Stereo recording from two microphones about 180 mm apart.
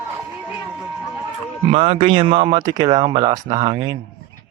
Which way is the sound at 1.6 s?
35° right (ahead or behind).